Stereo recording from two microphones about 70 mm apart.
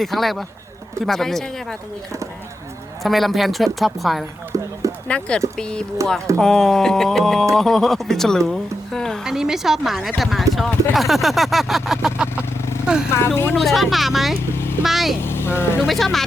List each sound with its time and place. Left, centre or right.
0.0 s speech: centre
3.0 s speech: centre
4.5 s run: right
5.0 s speech: centre
9.2 s speech: centre
12.1 s vehicle: centre
12.8 s a sound: centre
13.1 s speech: left
13.6 s speech: centre
14.5 s vehicle: left
14.8 s speech: centre
15.2 s speech: left
15.9 s speech: centre